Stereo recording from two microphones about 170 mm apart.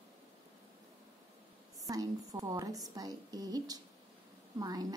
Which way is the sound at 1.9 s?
20° right (ahead or behind).